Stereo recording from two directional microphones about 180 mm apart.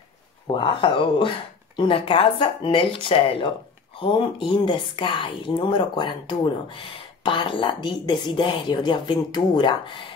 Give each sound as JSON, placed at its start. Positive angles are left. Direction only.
{"t": 0.5, "sound": "speech", "side_deg": 25}